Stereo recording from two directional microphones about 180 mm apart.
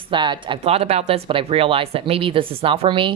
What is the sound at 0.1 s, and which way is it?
Speech, 25° right (ahead or behind).